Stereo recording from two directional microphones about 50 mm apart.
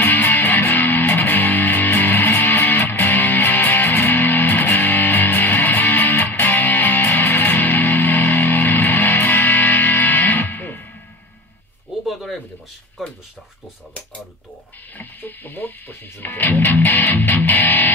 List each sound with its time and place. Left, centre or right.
0.0 s music: left
12.1 s a sound: centre
15.0 s music: left